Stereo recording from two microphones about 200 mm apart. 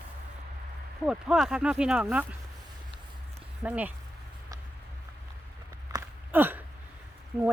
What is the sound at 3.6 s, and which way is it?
Speech, 5° right (ahead or behind).